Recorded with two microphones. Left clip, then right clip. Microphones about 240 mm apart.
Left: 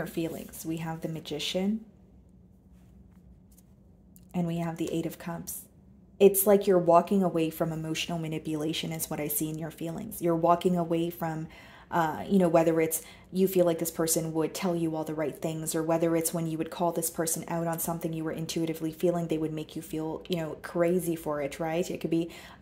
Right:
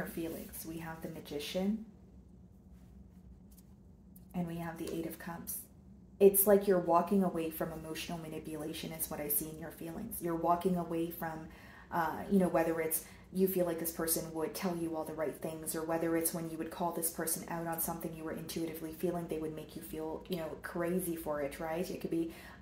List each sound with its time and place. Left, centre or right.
0.2 s a woman's voice: left
4.3 s a woman's voice: left